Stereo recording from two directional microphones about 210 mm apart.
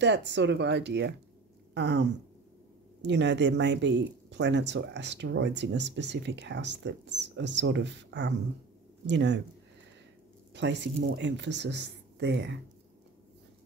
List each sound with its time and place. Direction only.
0.0 s speech: 55° right (ahead or behind)
1.7 s a sound: 55° right (ahead or behind)
3.0 s speech: 55° right (ahead or behind)
10.5 s speech: 55° right (ahead or behind)